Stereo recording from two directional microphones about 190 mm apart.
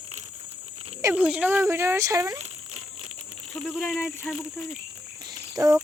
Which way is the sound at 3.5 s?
5° left (ahead or behind).